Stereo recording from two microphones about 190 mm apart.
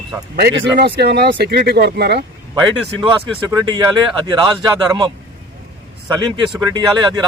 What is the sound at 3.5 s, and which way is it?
Speech, 20° right (ahead or behind).